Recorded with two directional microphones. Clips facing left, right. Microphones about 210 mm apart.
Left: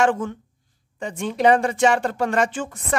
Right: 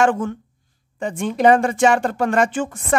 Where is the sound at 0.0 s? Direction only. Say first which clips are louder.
Right 2 dB; 50° right (ahead or behind).